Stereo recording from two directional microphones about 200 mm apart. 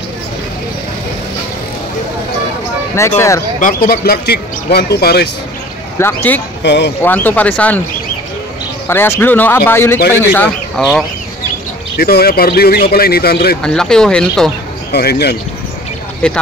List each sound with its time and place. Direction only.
3.0 s speech: 15° left (ahead or behind)
3.5 s speech: 45° left (ahead or behind)
5.9 s speech: 10° left (ahead or behind)
6.6 s speech: 60° left (ahead or behind)
7.0 s speech: 10° left (ahead or behind)
8.8 s speech: 10° left (ahead or behind)
10.8 s speech: 5° right (ahead or behind)
12.0 s speech: 50° left (ahead or behind)
13.6 s speech: 5° left (ahead or behind)
14.9 s speech: 50° left (ahead or behind)
16.2 s speech: 5° left (ahead or behind)